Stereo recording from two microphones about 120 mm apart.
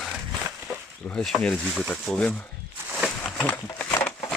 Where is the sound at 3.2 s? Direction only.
5° left (ahead or behind).